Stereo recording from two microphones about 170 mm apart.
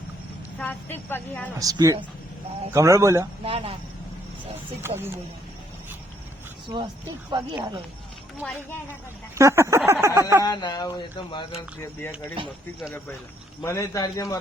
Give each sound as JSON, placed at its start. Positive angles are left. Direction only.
{"t": 0.6, "sound": "a woman's voice", "side_deg": 10}
{"t": 1.5, "sound": "speech", "side_deg": -20}
{"t": 2.7, "sound": "a sound", "side_deg": -15}
{"t": 3.4, "sound": "speech", "side_deg": -35}
{"t": 4.8, "sound": "a sound", "side_deg": -15}
{"t": 6.7, "sound": "speech", "side_deg": -25}
{"t": 8.4, "sound": "speech", "side_deg": 0}
{"t": 9.3, "sound": "a sound", "side_deg": -15}
{"t": 10.2, "sound": "speech", "side_deg": -15}
{"t": 10.4, "sound": "speech", "side_deg": 25}
{"t": 13.6, "sound": "speech", "side_deg": 20}